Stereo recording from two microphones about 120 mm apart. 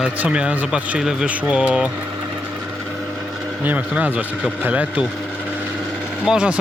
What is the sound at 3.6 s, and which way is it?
Speech, 15° right (ahead or behind).